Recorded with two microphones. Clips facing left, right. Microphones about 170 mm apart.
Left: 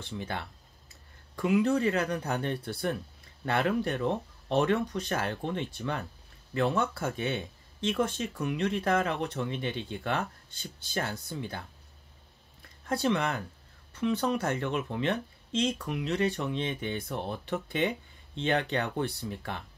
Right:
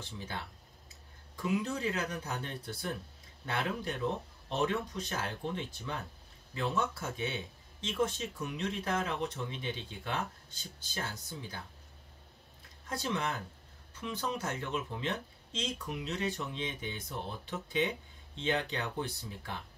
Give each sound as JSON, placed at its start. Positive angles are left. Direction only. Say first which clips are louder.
{"t": 1.3, "sound": "speech", "louder": "left 8 dB", "side_deg": 65}
{"t": 12.8, "sound": "speech", "louder": "left 7 dB", "side_deg": 70}